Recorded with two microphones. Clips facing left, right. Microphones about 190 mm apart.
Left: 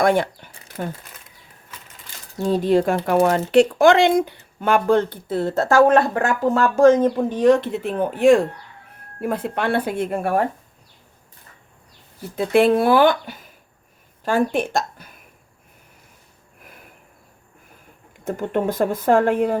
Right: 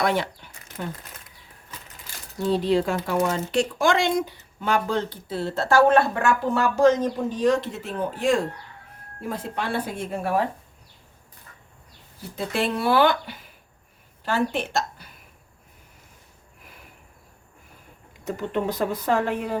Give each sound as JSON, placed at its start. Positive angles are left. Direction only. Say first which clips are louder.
{"t": 0.0, "sound": "speech", "louder": "left 6 dB", "side_deg": 50}
{"t": 2.4, "sound": "speech", "louder": "left 4 dB", "side_deg": 45}
{"t": 3.2, "sound": "speech", "louder": "left 8 dB", "side_deg": 65}
{"t": 6.7, "sound": "speech", "louder": "left 6 dB", "side_deg": 50}
{"t": 12.5, "sound": "speech", "louder": "left 7 dB", "side_deg": 55}
{"t": 18.3, "sound": "speech", "louder": "left 4 dB", "side_deg": 50}